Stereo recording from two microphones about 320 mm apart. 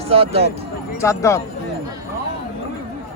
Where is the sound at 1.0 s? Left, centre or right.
Centre.